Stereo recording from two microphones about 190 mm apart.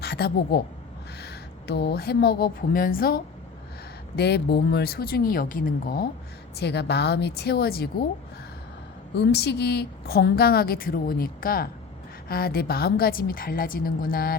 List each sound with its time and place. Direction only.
0.0 s a woman's voice: 55° left (ahead or behind)
6.6 s a woman's voice: 60° left (ahead or behind)
9.1 s a woman's voice: 60° left (ahead or behind)